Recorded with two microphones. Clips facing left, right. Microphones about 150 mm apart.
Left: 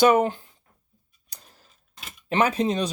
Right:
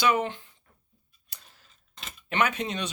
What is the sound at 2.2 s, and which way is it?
Speech, 35° left (ahead or behind).